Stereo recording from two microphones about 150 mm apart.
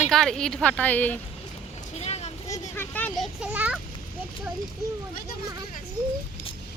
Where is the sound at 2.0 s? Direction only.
45° left (ahead or behind).